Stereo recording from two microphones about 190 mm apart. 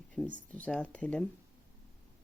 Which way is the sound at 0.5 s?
5° left (ahead or behind).